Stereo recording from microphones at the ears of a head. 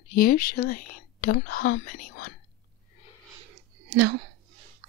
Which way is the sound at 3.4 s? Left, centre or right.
Right.